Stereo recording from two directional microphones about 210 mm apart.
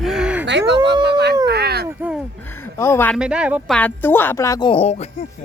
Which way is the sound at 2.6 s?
10° left (ahead or behind).